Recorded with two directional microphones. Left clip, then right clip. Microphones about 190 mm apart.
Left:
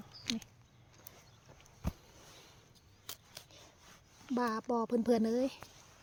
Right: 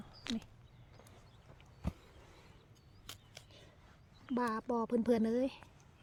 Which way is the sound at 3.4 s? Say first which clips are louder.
Left 3 dB; 35° left (ahead or behind).